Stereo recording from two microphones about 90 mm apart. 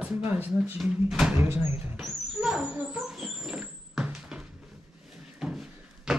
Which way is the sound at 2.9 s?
5° right (ahead or behind).